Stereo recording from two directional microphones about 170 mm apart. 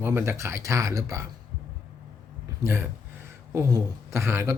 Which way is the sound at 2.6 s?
15° right (ahead or behind).